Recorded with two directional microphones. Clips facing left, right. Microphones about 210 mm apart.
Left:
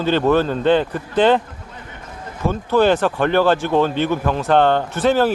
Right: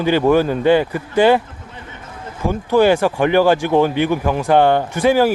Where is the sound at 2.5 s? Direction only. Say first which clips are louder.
Right 2 dB; 15° right (ahead or behind).